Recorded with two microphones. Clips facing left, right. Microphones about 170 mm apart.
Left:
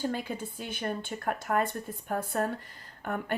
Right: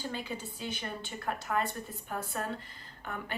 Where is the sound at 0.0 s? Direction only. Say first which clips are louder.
Left 5 dB; 50° left (ahead or behind).